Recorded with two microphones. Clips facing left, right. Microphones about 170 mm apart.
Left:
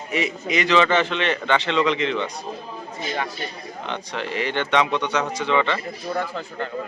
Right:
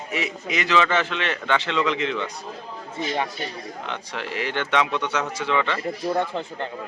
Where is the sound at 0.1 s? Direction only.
Centre (ahead or behind).